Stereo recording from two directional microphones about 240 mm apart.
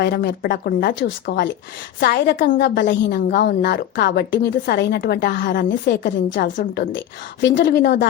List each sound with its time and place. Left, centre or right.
0.0 s a woman's voice: left